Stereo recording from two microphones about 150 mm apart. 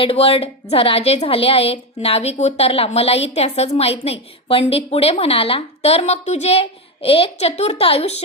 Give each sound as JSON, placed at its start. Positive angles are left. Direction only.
{"t": 0.0, "sound": "a woman's voice", "side_deg": 40}